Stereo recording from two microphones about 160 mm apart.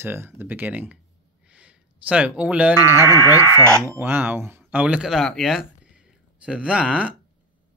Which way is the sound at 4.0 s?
15° right (ahead or behind).